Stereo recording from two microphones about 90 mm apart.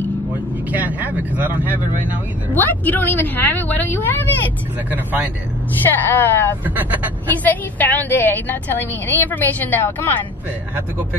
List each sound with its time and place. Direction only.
0.7 s speech: 20° right (ahead or behind)
2.5 s a woman's voice: 20° left (ahead or behind)
4.9 s speech: 20° right (ahead or behind)
5.9 s a woman's voice: 20° left (ahead or behind)
6.6 s speech: 20° right (ahead or behind)
7.2 s a woman's voice: 20° left (ahead or behind)